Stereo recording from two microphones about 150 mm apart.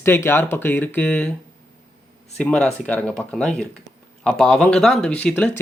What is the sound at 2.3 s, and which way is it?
Speech, 5° left (ahead or behind).